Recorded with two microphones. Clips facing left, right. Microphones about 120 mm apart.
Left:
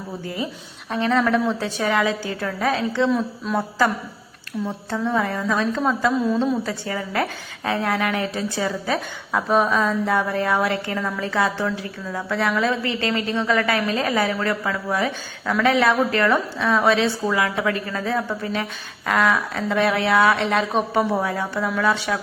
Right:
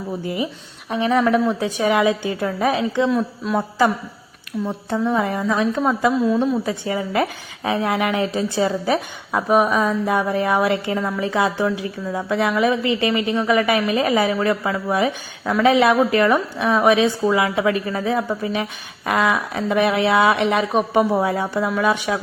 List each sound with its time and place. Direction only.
0.9 s a woman's voice: 15° right (ahead or behind)
3.4 s a woman's voice: centre (ahead or behind)
4.6 s a woman's voice: 15° right (ahead or behind)
6.1 s a woman's voice: 5° right (ahead or behind)
6.7 s a woman's voice: 20° right (ahead or behind)